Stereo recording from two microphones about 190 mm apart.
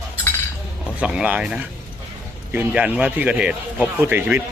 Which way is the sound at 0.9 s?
5° right (ahead or behind).